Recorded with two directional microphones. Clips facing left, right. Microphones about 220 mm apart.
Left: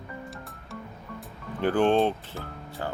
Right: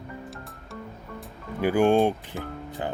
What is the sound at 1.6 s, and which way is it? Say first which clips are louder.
Speech: right 2 dB; 10° right (ahead or behind).